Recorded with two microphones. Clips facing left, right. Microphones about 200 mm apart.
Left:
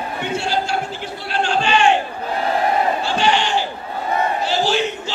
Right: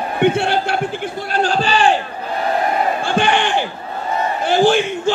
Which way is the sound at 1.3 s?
40° right (ahead or behind).